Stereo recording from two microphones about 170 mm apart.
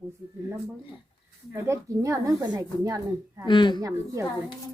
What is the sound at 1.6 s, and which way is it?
Speech, 20° right (ahead or behind).